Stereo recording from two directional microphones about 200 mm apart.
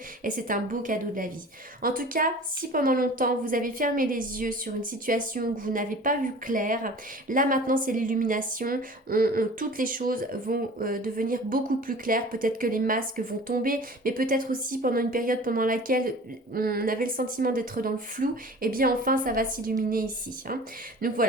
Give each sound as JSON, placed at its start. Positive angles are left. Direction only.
{"t": 0.3, "sound": "a woman's voice", "side_deg": -40}